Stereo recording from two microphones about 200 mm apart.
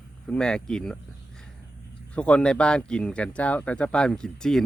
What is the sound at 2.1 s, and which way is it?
Speech, 5° left (ahead or behind).